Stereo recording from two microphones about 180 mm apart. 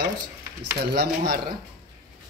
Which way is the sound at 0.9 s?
65° right (ahead or behind).